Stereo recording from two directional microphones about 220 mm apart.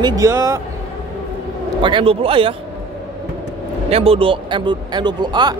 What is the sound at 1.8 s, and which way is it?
Speech, 25° right (ahead or behind).